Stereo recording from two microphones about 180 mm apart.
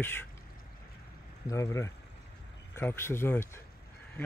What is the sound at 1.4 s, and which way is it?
Speech, 15° left (ahead or behind).